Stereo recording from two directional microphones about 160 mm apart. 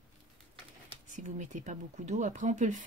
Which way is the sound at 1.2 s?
50° right (ahead or behind).